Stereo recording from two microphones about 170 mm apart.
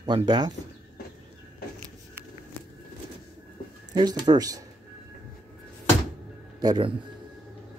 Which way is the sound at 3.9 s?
25° right (ahead or behind).